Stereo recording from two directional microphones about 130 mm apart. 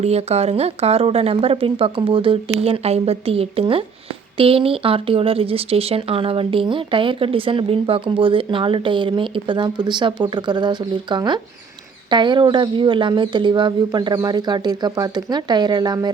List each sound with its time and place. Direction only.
0.0 s a woman's voice: 55° right (ahead or behind); by 16.1 s 30° right (ahead or behind)